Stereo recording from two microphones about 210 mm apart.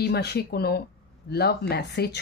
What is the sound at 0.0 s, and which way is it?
Speech, 50° left (ahead or behind).